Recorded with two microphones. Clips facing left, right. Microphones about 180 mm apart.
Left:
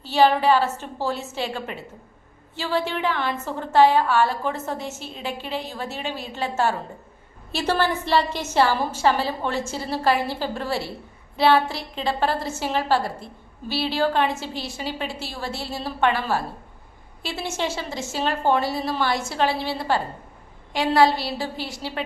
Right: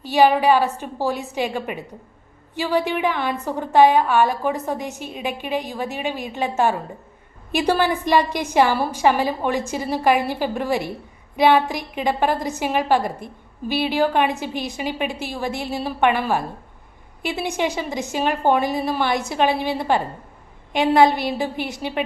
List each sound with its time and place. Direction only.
0.0 s a woman's voice: 15° right (ahead or behind)